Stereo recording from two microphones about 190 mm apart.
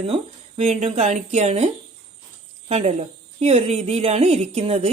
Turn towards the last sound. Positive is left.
turn(degrees=-35)  # may be behind; listen again after turning